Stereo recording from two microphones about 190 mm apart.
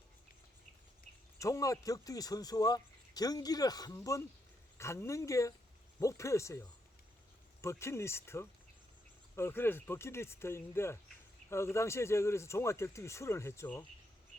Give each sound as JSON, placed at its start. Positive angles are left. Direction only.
{"t": 1.4, "sound": "speech", "side_deg": 15}
{"t": 7.6, "sound": "speech", "side_deg": 15}